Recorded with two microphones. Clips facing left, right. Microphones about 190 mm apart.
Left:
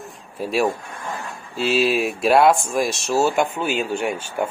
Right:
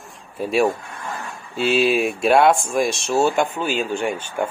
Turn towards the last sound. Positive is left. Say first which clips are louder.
# even
turn(degrees=5)  # may be behind; listen again after turning